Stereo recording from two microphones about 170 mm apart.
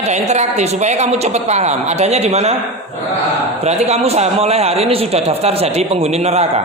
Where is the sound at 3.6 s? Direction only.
40° right (ahead or behind).